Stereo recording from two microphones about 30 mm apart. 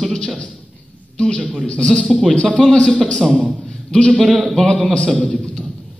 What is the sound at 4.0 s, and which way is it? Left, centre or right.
Speech, left.